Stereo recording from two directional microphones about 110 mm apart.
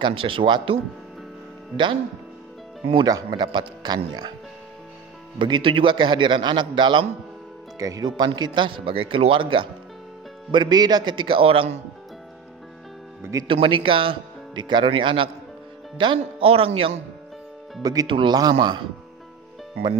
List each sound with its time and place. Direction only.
0.0 s a man's voice: 50° right (ahead or behind)
2.9 s speech: 40° right (ahead or behind)
5.4 s a man's voice: 50° right (ahead or behind)
7.8 s speech: 35° right (ahead or behind)
8.4 s a man's voice: 45° right (ahead or behind)
10.5 s a man's voice: 40° right (ahead or behind); by 11.8 s 55° right (ahead or behind)
13.2 s speech: 30° right (ahead or behind)
13.5 s a man's voice: 50° right (ahead or behind)
17.8 s a man's voice: 35° right (ahead or behind)